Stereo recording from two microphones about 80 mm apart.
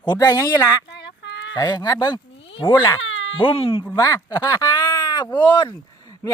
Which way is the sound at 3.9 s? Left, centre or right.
Left.